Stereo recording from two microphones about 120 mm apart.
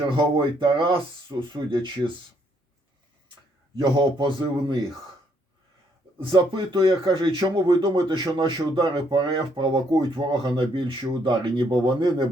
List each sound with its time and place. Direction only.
0.2 s speech: 45° right (ahead or behind)
3.8 s a man's voice: 40° right (ahead or behind)
6.1 s speech: 45° right (ahead or behind)